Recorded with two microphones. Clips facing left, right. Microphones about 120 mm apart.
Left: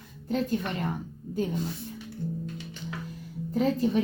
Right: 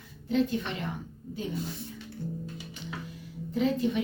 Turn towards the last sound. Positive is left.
turn(degrees=40)  # may be behind; listen again after turning